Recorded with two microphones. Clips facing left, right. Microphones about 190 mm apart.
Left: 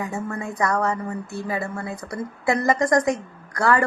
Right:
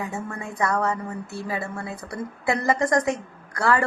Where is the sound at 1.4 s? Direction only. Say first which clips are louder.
Left 2 dB; 25° left (ahead or behind).